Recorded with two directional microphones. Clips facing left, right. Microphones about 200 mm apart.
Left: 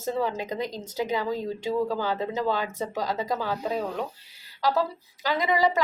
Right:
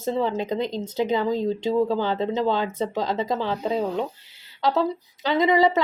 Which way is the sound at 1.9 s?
25° right (ahead or behind).